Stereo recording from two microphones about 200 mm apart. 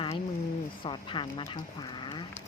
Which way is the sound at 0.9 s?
25° left (ahead or behind).